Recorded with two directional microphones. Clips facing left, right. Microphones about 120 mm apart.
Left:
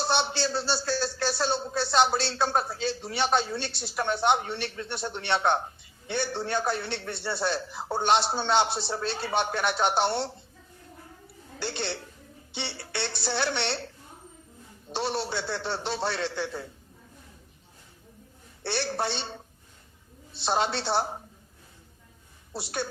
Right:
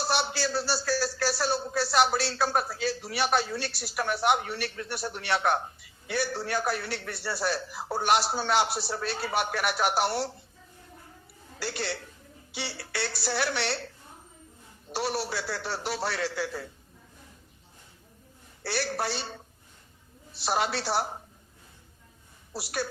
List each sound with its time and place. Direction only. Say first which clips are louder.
0.0 s a sound: left 2 dB; 25° left (ahead or behind)
1.4 s a man's voice: left 2 dB; 25° left (ahead or behind)
8.6 s a woman's voice: left 1 dB; centre (ahead or behind)
8.9 s a man's voice: left 1 dB; 25° left (ahead or behind)
11.6 s a man's voice: left 1 dB; 25° left (ahead or behind)
13.1 s a woman's voice: even; centre (ahead or behind)
13.6 s a man's voice: even; 30° left (ahead or behind)
14.9 s a man's voice: left 1 dB; 25° left (ahead or behind)
18.6 s a man's voice: left 1 dB; 25° left (ahead or behind)
20.3 s a man's voice: left 1 dB; 30° left (ahead or behind)
22.6 s a man's voice: even; 25° left (ahead or behind)